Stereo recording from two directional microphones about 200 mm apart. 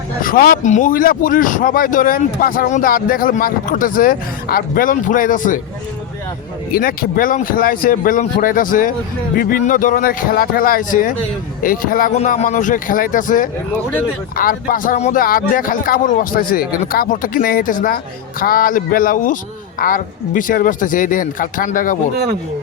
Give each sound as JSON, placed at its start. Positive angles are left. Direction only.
{"t": 0.2, "sound": "speech", "side_deg": 45}
{"t": 6.7, "sound": "speech", "side_deg": 45}